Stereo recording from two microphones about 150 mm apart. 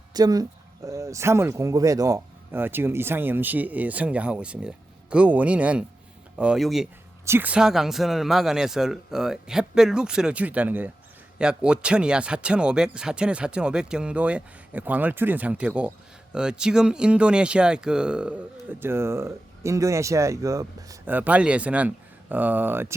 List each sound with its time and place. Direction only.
0.1 s speech: 25° right (ahead or behind); by 6.8 s centre (ahead or behind)
7.3 s speech: 10° right (ahead or behind)
21.1 s speech: 10° right (ahead or behind)